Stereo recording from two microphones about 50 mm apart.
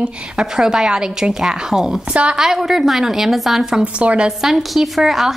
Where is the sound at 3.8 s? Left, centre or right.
Right.